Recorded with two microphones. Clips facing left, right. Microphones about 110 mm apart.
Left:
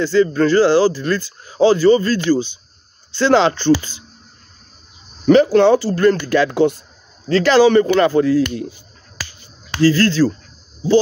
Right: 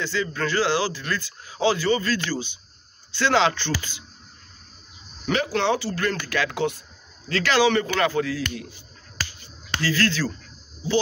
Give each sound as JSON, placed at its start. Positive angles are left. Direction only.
{"t": 0.0, "sound": "speech", "side_deg": 40}
{"t": 5.2, "sound": "speech", "side_deg": 40}
{"t": 9.8, "sound": "speech", "side_deg": 35}